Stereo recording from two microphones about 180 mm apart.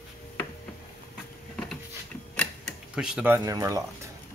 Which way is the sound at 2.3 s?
Centre (ahead or behind).